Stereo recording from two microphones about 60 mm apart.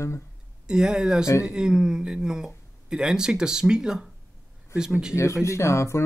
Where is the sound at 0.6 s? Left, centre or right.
Centre.